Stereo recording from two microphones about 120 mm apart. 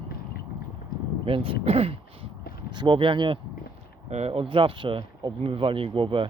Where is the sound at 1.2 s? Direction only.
50° right (ahead or behind).